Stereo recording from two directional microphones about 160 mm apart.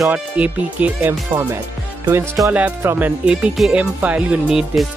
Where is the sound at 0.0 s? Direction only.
10° right (ahead or behind).